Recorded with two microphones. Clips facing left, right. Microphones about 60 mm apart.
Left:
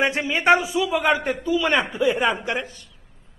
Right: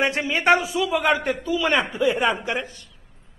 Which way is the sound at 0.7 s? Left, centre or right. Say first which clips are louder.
Even; centre.